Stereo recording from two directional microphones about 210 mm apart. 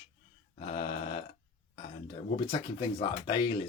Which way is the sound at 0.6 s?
25° left (ahead or behind).